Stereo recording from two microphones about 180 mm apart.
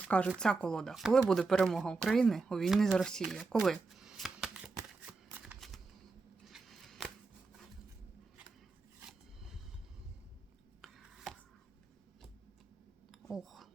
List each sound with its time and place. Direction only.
0.1 s speech: 5° left (ahead or behind)
4.9 s shuffling cards: 10° right (ahead or behind)
6.4 s scissors: centre (ahead or behind)
10.8 s chopping: centre (ahead or behind)
13.1 s a sound: centre (ahead or behind)